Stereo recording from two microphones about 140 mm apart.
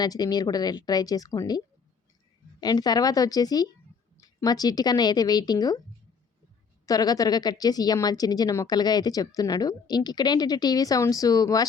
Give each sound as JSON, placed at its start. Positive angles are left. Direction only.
{"t": 0.0, "sound": "speech", "side_deg": 30}
{"t": 6.8, "sound": "speech", "side_deg": 25}